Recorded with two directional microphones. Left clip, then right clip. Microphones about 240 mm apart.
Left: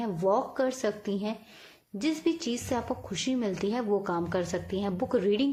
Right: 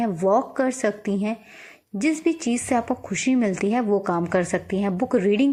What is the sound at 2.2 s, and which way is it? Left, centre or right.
A woman's voice, right.